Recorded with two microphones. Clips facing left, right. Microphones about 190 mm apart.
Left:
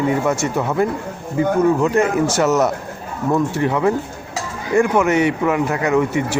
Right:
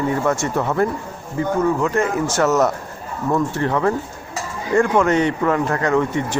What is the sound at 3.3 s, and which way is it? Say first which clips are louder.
Speech: left 2 dB; 10° left (ahead or behind).